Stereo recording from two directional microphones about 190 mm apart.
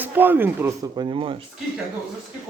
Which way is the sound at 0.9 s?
25° right (ahead or behind).